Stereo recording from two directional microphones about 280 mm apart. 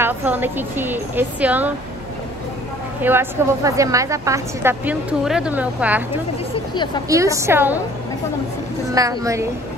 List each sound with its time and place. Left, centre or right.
0.0 s a woman's voice: centre
3.0 s a woman's voice: centre
6.5 s a sound: centre
7.1 s a woman's voice: centre
8.9 s a woman's voice: centre